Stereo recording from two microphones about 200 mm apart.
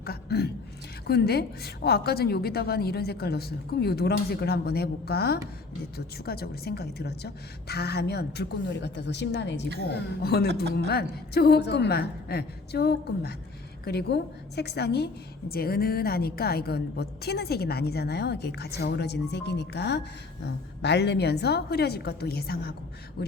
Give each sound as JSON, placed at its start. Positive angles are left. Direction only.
{"t": 0.0, "sound": "a woman's voice", "side_deg": 50}
{"t": 10.5, "sound": "a woman's voice", "side_deg": -60}
{"t": 10.8, "sound": "a woman's voice", "side_deg": 55}